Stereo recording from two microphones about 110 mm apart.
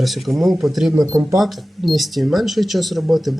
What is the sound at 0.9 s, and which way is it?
Speech, 30° right (ahead or behind).